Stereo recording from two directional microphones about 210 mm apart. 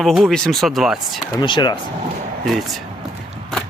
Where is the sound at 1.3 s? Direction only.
20° left (ahead or behind).